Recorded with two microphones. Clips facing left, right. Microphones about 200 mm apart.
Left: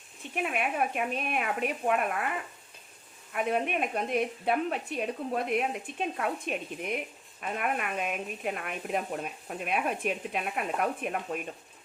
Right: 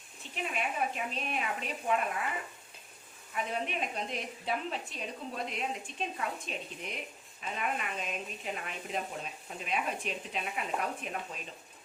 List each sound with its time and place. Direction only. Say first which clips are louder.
0.5 s a woman's voice: left 3 dB; 60° left (ahead or behind)
3.3 s a woman's voice: left 6 dB; 60° left (ahead or behind)